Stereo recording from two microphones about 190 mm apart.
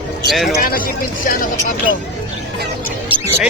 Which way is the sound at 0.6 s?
50° left (ahead or behind).